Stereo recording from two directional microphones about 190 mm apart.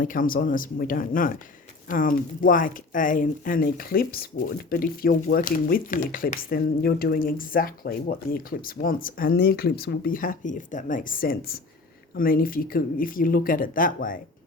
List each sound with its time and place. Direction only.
0.0 s speech: 45° left (ahead or behind)